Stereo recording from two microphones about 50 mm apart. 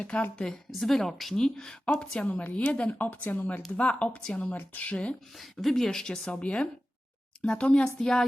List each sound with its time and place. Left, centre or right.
0.1 s a woman's voice: left
0.7 s speech: centre
2.0 s a woman's voice: left
5.4 s speech: centre